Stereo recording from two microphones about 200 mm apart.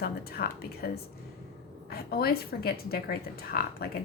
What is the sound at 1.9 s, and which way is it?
Speech, 50° left (ahead or behind).